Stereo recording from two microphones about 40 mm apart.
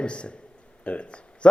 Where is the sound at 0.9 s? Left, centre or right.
Left.